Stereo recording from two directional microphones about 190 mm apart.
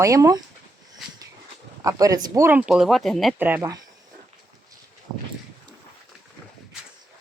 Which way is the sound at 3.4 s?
10° right (ahead or behind).